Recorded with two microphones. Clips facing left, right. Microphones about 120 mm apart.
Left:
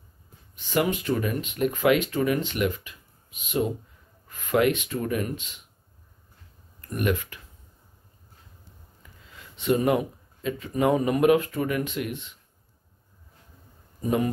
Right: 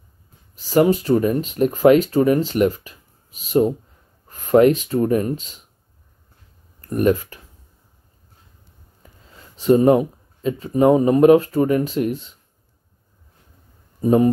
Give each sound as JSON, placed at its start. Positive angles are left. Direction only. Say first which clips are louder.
{"t": 0.6, "sound": "speech", "louder": "right 9 dB", "side_deg": -35}
{"t": 6.9, "sound": "speech", "louder": "right 9 dB", "side_deg": -35}
{"t": 9.0, "sound": "speech", "louder": "right 3 dB", "side_deg": -35}
{"t": 14.0, "sound": "speech", "louder": "right 10 dB", "side_deg": -35}